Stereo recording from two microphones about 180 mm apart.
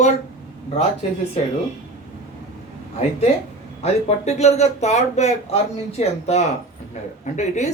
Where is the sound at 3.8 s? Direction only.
35° left (ahead or behind).